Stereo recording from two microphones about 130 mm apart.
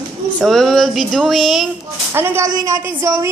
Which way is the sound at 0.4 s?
Centre (ahead or behind).